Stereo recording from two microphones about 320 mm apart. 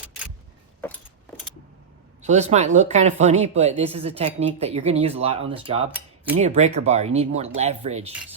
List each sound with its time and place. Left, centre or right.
2.2 s speech: right